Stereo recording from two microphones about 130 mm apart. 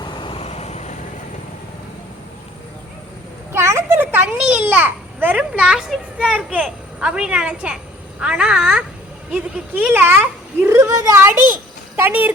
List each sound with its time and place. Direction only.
0.0 s vehicle: 35° left (ahead or behind)
0.4 s vehicle: 55° left (ahead or behind)
3.5 s a sound: 20° right (ahead or behind)
8.2 s speech: 10° right (ahead or behind)